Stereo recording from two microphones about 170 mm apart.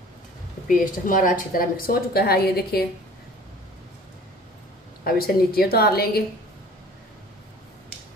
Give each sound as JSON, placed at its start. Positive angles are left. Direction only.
{"t": 0.7, "sound": "a woman's voice", "side_deg": 50}
{"t": 5.0, "sound": "a woman's voice", "side_deg": 60}